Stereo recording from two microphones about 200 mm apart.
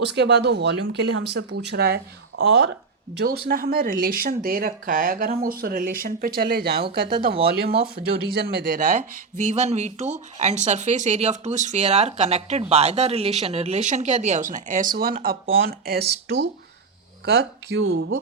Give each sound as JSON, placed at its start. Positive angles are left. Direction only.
{"t": 0.0, "sound": "speech", "side_deg": -60}